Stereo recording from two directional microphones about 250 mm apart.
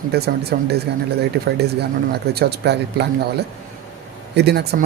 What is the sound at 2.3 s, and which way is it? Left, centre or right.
Speech, right.